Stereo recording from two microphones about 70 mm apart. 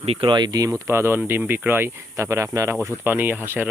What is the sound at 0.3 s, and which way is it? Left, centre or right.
Speech, right.